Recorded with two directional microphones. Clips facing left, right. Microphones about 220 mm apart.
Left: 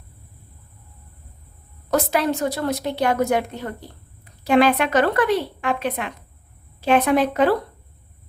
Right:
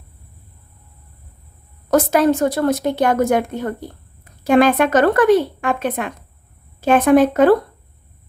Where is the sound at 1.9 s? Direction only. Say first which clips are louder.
Right 6 dB; 45° right (ahead or behind).